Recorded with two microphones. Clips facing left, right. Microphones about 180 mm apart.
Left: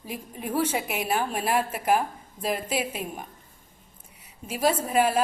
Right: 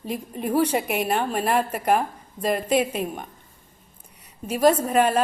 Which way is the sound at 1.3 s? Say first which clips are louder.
Right 3 dB; centre (ahead or behind).